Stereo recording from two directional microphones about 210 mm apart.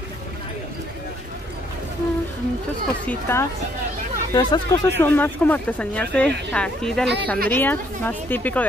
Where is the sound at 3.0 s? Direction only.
10° left (ahead or behind).